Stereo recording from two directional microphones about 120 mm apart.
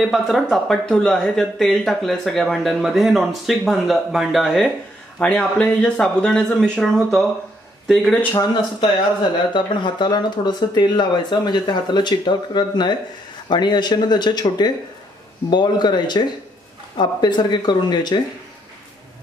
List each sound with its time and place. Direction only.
0.0 s speech: centre (ahead or behind)
9.5 s speech: 40° left (ahead or behind)